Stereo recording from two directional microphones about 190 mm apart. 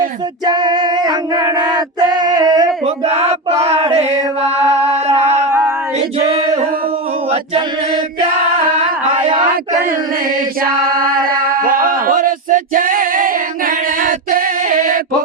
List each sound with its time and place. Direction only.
0.4 s a sound: 20° right (ahead or behind)
2.8 s chant: 35° right (ahead or behind)
5.5 s female singing: 10° right (ahead or behind)
10.6 s speech: 50° right (ahead or behind)